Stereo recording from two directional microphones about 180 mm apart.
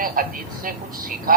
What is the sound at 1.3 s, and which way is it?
Speech, 50° right (ahead or behind).